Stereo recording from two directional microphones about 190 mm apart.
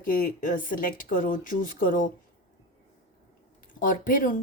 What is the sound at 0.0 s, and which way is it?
Speech, 45° left (ahead or behind).